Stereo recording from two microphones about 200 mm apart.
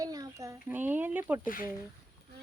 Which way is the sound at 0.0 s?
20° right (ahead or behind).